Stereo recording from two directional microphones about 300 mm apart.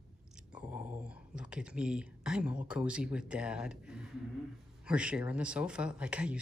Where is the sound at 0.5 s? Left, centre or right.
Centre.